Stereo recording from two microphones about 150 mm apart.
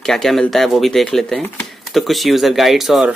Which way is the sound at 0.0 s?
Centre (ahead or behind).